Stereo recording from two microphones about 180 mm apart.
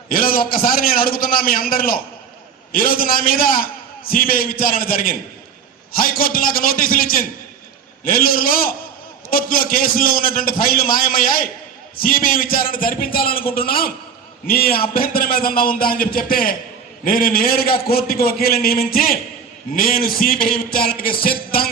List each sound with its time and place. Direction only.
0.1 s a man's voice: 50° left (ahead or behind)